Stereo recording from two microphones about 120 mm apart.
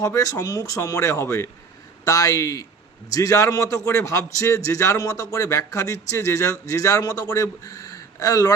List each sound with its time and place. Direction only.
0.0 s a man's voice: 30° left (ahead or behind)